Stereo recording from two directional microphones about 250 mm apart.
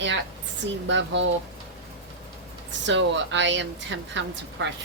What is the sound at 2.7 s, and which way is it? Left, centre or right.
Speech, right.